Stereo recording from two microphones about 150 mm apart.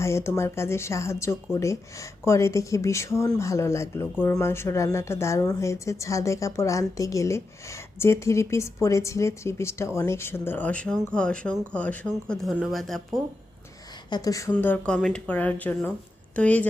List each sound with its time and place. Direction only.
0.0 s speech: 20° left (ahead or behind); by 13.0 s centre (ahead or behind)
14.1 s speech: 25° left (ahead or behind)
14.5 s speech: 10° left (ahead or behind)